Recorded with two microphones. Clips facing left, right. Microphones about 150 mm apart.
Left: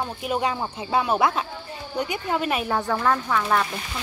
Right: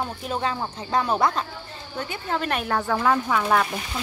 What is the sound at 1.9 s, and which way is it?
Speech, 15° left (ahead or behind).